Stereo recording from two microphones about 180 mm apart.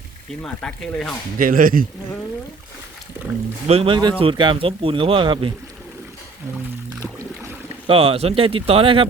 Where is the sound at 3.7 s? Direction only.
30° right (ahead or behind).